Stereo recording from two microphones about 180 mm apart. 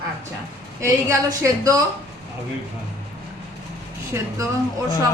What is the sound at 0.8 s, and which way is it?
A woman's voice, 20° right (ahead or behind).